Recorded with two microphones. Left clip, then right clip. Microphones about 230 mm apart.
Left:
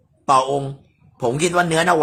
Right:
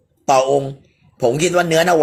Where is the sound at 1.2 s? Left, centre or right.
Centre.